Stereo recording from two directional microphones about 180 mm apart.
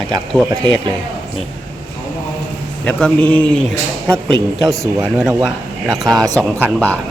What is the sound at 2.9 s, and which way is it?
Speech, 5° left (ahead or behind).